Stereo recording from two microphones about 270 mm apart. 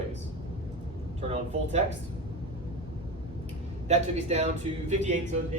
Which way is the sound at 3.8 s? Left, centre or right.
Right.